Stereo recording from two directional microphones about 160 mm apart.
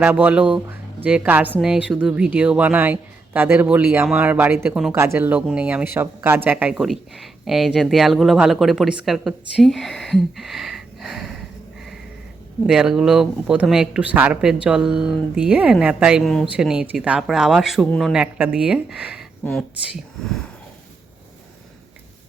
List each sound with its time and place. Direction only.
0.0 s speech: 10° right (ahead or behind)
12.6 s speech: 5° right (ahead or behind)